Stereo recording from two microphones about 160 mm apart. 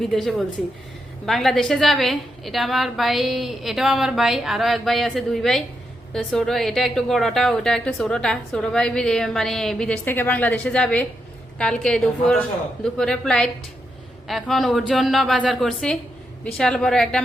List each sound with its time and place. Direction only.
0.0 s a woman's voice: centre (ahead or behind)